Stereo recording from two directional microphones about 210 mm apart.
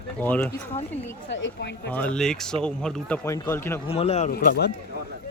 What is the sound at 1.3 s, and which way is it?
Speech, 60° left (ahead or behind).